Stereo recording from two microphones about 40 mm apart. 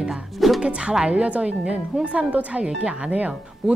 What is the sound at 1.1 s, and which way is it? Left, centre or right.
Speech, right.